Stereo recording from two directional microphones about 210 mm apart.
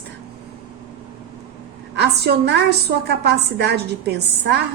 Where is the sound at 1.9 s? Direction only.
55° right (ahead or behind).